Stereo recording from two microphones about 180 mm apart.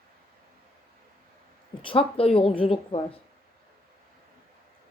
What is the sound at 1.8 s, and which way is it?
Speech, 30° left (ahead or behind).